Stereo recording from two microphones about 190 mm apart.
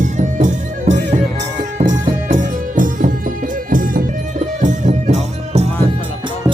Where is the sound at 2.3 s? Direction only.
45° right (ahead or behind).